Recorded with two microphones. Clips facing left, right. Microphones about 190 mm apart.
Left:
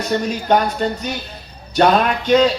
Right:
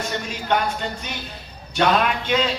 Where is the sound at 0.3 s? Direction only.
40° left (ahead or behind).